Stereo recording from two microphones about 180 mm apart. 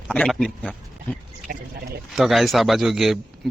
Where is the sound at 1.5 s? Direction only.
55° right (ahead or behind).